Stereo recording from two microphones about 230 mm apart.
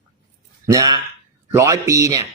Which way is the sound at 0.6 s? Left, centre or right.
Centre.